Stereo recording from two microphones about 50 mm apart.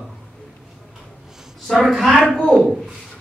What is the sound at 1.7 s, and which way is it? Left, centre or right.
Speech, centre.